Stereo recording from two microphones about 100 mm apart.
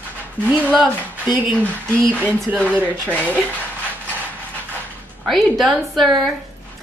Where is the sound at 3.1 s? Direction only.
15° left (ahead or behind).